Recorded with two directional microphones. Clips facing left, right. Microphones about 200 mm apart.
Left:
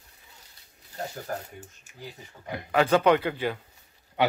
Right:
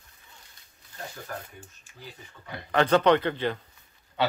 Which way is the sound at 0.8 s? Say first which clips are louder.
Left 5 dB; 40° left (ahead or behind).